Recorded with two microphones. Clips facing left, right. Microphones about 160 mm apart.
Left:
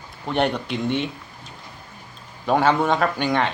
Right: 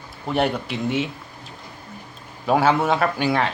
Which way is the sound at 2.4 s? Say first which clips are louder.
Even; 5° right (ahead or behind).